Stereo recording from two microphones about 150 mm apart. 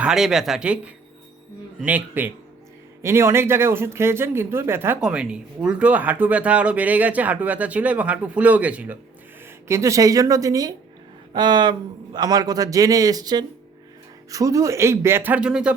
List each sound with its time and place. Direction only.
0.0 s speech: 5° right (ahead or behind)
1.8 s speech: 10° right (ahead or behind)
9.6 s a man's voice: 20° right (ahead or behind)